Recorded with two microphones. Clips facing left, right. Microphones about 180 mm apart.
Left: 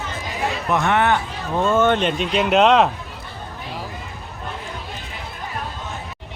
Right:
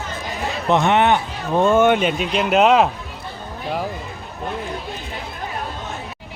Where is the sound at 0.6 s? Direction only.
25° right (ahead or behind); by 2.8 s 5° right (ahead or behind).